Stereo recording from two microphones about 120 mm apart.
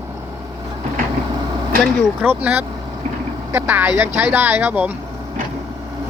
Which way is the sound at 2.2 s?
15° right (ahead or behind).